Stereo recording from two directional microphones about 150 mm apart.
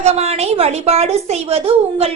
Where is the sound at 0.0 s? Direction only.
45° right (ahead or behind).